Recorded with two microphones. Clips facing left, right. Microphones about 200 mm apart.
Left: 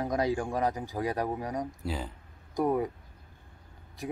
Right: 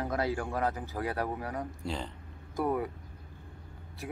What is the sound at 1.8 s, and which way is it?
Speech, 5° left (ahead or behind).